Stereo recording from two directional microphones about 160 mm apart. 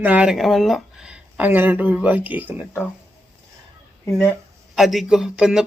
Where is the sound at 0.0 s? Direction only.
10° right (ahead or behind).